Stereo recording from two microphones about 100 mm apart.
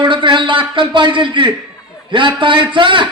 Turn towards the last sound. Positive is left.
turn(degrees=-55)  # may be behind; listen again after turning